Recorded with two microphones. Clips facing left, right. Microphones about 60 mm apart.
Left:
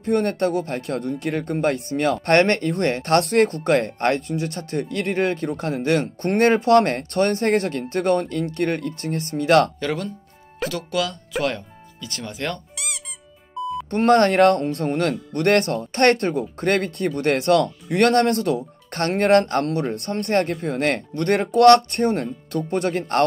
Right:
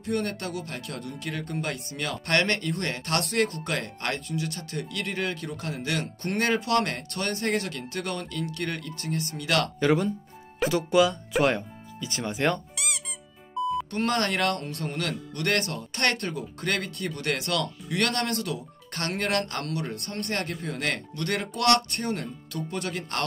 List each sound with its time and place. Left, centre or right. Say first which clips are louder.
0.0 s speech: left 9 dB; left
9.8 s speech: right 3 dB; centre
12.7 s squeak: even; centre
13.8 s speech: left 10 dB; left